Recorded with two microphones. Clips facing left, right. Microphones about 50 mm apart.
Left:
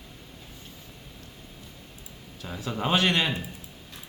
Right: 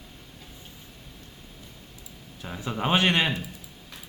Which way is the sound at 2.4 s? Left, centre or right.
Centre.